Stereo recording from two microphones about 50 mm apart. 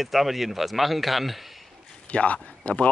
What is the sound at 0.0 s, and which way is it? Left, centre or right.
Speech, centre.